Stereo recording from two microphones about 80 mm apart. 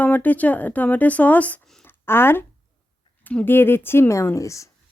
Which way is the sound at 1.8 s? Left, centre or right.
Left.